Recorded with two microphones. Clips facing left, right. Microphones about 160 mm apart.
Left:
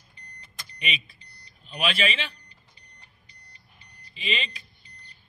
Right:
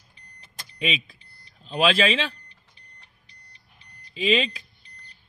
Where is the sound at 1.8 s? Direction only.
90° right.